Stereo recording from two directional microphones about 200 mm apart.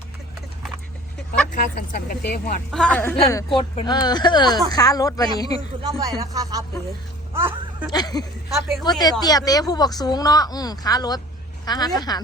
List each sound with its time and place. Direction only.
1.5 s speech: 45° left (ahead or behind)
2.7 s speech: 5° left (ahead or behind)
5.5 s speech: 20° right (ahead or behind)
7.9 s a woman's voice: 20° left (ahead or behind)